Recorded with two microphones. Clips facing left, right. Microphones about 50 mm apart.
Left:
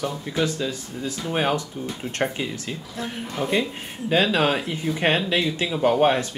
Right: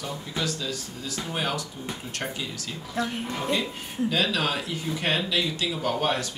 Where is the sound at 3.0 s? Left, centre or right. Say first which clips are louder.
Even; left.